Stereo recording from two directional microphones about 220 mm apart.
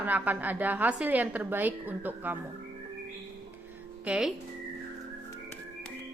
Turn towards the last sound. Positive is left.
turn(degrees=-5)  # may be behind; listen again after turning